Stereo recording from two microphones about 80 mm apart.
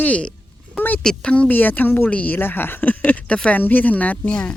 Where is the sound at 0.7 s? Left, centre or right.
Left.